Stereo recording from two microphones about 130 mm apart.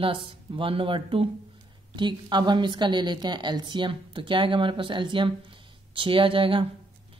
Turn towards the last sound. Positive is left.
turn(degrees=-40)  # may be behind; listen again after turning